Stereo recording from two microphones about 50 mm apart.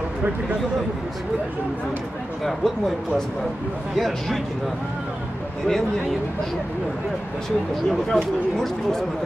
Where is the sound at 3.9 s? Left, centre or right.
Centre.